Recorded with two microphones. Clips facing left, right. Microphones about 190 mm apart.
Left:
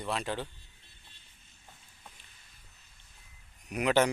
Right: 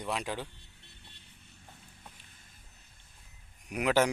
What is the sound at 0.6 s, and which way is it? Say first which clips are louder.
Vehicle: right 4 dB; 70° right (ahead or behind).